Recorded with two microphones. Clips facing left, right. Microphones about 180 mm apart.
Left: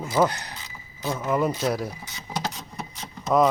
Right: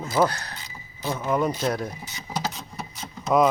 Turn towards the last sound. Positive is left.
turn(degrees=0)  # may be behind; listen again after turning